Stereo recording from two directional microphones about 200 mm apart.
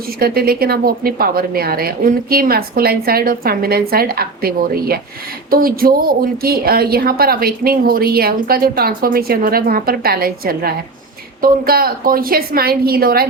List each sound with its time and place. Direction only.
0.2 s a woman's voice: 50° right (ahead or behind)